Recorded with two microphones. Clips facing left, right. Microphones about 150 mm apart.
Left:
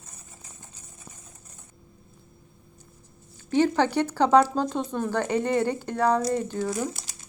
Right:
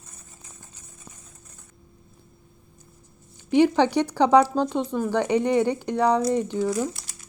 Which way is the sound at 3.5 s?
15° right (ahead or behind).